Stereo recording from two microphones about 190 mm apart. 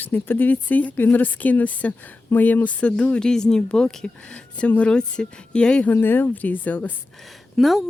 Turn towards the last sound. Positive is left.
turn(degrees=0)  # may be behind; listen again after turning